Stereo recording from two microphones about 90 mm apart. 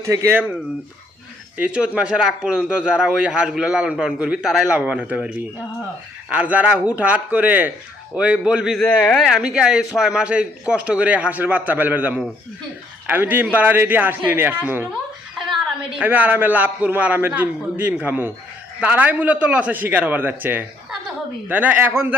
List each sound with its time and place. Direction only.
0.0 s speech: 35° right (ahead or behind)
1.5 s a man's voice: 10° right (ahead or behind)
6.3 s a man's voice: 15° right (ahead or behind)
8.9 s speech: 15° left (ahead or behind)
9.2 s a man's voice: 5° right (ahead or behind); by 14.8 s 25° right (ahead or behind)
15.4 s a sound: centre (ahead or behind)
16.0 s a man's voice: 20° right (ahead or behind)